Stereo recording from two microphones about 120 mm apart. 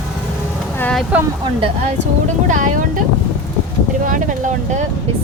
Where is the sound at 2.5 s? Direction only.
90° right.